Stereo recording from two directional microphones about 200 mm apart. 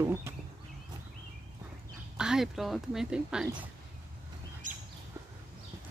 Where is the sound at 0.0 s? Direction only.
15° right (ahead or behind).